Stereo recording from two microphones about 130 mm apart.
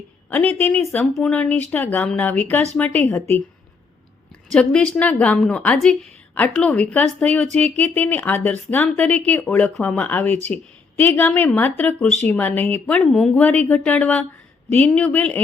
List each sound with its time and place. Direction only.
0.3 s a woman's voice: 15° left (ahead or behind)
4.5 s a woman's voice: 5° left (ahead or behind)